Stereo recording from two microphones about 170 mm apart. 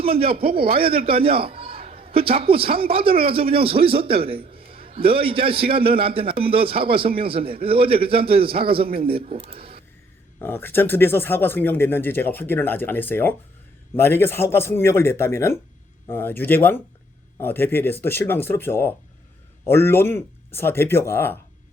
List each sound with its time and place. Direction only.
0.0 s a man's voice: 35° right (ahead or behind)
10.4 s speech: 10° left (ahead or behind)